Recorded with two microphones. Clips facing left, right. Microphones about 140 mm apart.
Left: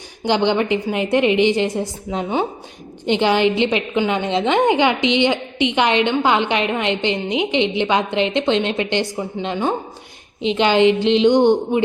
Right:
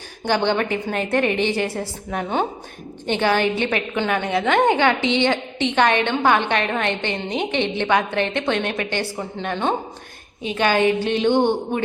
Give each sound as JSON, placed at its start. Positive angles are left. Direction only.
{"t": 0.3, "sound": "a woman's voice", "side_deg": 15}